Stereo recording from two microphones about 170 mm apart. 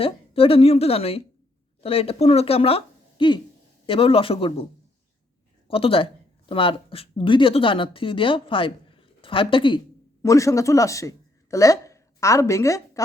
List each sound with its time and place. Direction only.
0.0 s speech: 35° left (ahead or behind)
5.6 s speech: 35° left (ahead or behind)
10.2 s a woman's voice: 20° left (ahead or behind)